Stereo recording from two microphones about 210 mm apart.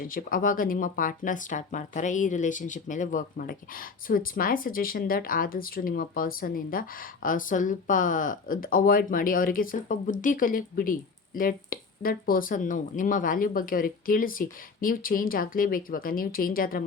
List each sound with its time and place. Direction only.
0.0 s speech: 40° left (ahead or behind)